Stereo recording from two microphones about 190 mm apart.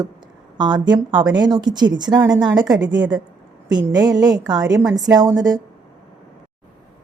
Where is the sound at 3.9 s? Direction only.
20° right (ahead or behind).